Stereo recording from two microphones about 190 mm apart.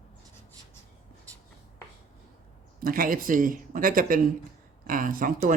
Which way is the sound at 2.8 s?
50° right (ahead or behind).